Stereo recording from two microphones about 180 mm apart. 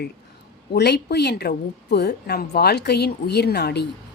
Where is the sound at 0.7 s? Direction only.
65° left (ahead or behind).